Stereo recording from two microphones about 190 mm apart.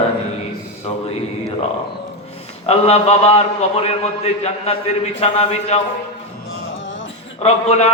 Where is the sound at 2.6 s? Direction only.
35° left (ahead or behind).